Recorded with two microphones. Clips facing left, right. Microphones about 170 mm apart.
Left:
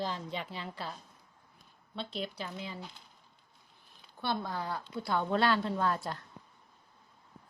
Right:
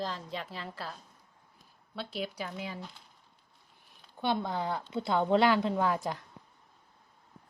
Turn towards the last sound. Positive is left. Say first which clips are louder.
# right 2 dB
turn(degrees=-15)  # may be behind; listen again after turning